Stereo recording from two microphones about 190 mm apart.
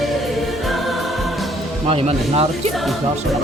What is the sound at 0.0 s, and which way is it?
Music, centre (ahead or behind).